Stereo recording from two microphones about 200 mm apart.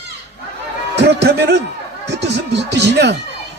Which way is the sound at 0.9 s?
55° right (ahead or behind).